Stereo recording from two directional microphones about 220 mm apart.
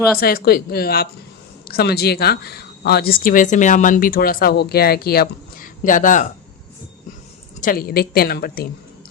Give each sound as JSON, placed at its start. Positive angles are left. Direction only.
{"t": 0.2, "sound": "speech", "side_deg": 45}
{"t": 7.6, "sound": "speech", "side_deg": 40}